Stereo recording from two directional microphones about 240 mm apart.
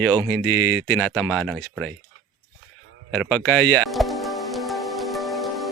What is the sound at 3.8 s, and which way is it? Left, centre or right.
Music, centre.